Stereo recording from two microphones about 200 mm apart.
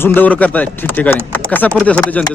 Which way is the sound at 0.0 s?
10° left (ahead or behind).